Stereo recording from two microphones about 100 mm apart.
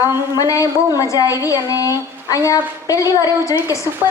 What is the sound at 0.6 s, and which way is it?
A woman's voice, 35° left (ahead or behind).